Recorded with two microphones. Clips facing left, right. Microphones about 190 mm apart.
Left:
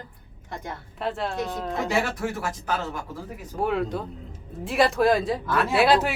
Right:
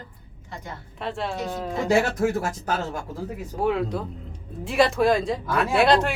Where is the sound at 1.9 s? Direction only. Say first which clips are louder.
Right 8 dB; 45° right (ahead or behind).